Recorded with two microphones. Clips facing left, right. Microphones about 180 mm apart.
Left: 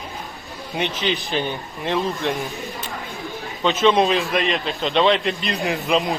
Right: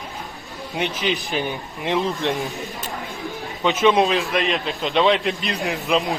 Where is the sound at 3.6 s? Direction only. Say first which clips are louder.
Even; 10° right (ahead or behind).